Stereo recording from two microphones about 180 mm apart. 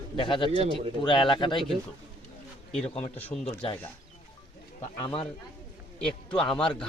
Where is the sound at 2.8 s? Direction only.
35° left (ahead or behind).